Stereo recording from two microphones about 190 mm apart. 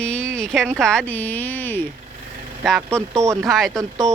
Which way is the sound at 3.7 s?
20° right (ahead or behind).